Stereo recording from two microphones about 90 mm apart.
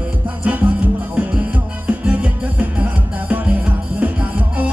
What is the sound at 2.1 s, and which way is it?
Music, 15° right (ahead or behind).